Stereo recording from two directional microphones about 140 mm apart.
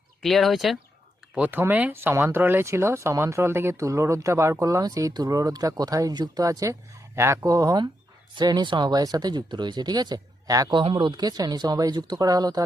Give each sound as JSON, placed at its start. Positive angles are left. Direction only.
{"t": 0.2, "sound": "speech", "side_deg": 0}
{"t": 1.4, "sound": "speech", "side_deg": -15}